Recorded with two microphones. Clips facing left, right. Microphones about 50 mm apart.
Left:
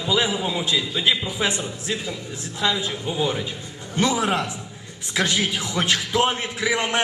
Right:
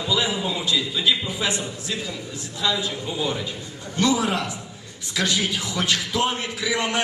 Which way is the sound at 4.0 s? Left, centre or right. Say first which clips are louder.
Even; left.